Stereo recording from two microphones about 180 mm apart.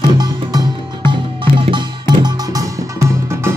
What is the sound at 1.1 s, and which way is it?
Music, 25° right (ahead or behind).